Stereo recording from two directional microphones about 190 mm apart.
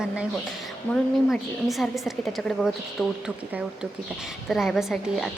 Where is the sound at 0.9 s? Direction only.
10° left (ahead or behind).